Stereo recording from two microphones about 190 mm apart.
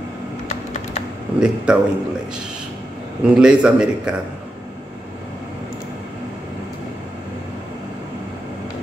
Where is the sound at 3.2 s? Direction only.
5° right (ahead or behind).